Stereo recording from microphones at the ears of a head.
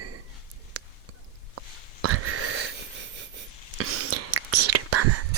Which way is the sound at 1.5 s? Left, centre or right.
Right.